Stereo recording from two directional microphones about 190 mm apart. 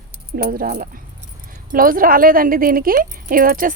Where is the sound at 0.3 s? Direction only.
55° right (ahead or behind).